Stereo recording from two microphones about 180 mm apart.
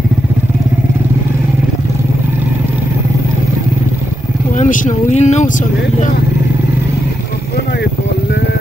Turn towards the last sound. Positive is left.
turn(degrees=65)  # may be behind; listen again after turning